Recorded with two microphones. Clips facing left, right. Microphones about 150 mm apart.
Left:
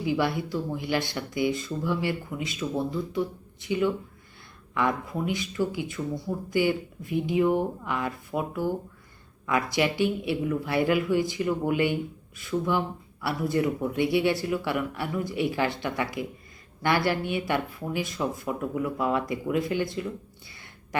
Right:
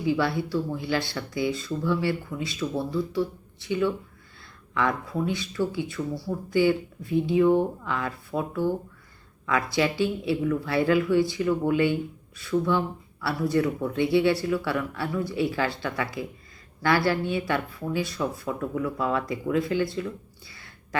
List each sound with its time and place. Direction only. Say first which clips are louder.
0.0 s speech: right 1 dB; 20° left (ahead or behind)